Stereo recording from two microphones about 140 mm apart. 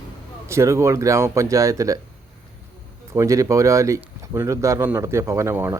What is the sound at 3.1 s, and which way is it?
Speech, 20° right (ahead or behind).